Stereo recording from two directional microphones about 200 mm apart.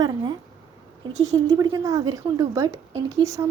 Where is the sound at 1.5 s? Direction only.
20° right (ahead or behind).